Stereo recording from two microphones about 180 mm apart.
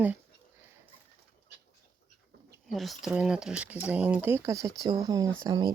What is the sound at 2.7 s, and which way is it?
Speech, centre (ahead or behind).